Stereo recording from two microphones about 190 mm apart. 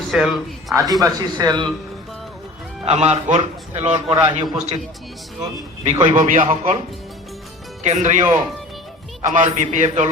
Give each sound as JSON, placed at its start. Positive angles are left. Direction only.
{"t": 0.1, "sound": "speech", "side_deg": 0}
{"t": 0.7, "sound": "speech", "side_deg": -15}
{"t": 2.8, "sound": "a man's voice", "side_deg": -35}
{"t": 4.1, "sound": "speech", "side_deg": -20}
{"t": 4.5, "sound": "a man's voice", "side_deg": -35}
{"t": 5.8, "sound": "a man's voice", "side_deg": -30}
{"t": 6.1, "sound": "a man's voice", "side_deg": -45}
{"t": 8.0, "sound": "a man's voice", "side_deg": -40}